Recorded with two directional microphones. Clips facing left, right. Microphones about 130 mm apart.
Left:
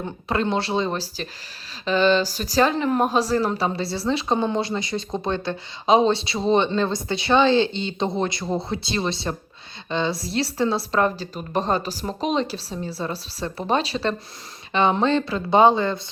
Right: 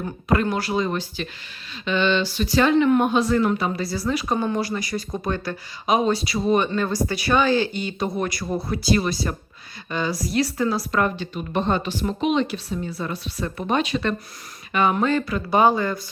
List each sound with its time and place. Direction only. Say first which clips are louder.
0.0 s a woman's voice: right 2 dB; 25° left (ahead or behind)